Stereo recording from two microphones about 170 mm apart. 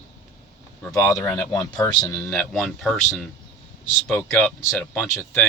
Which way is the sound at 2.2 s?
5° left (ahead or behind).